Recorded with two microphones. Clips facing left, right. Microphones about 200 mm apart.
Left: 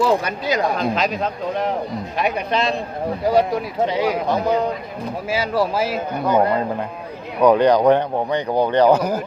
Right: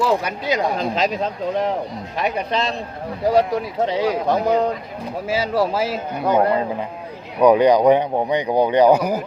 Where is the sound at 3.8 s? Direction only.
30° right (ahead or behind).